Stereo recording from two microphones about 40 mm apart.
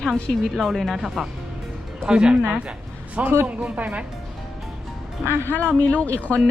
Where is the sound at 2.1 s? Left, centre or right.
Right.